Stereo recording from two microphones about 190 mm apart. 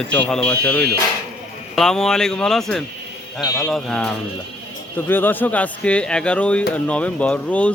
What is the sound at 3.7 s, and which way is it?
Speech, 5° left (ahead or behind).